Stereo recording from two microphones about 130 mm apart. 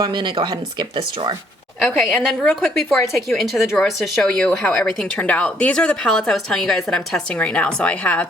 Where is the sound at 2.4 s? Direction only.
Centre (ahead or behind).